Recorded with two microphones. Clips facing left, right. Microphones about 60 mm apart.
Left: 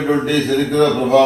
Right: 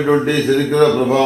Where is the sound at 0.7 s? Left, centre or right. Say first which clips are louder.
Even; centre.